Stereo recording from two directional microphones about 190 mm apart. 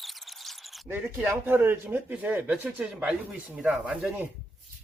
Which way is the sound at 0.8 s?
10° right (ahead or behind).